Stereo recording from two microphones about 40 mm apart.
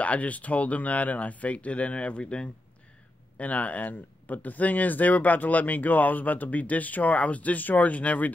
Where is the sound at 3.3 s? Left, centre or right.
Left.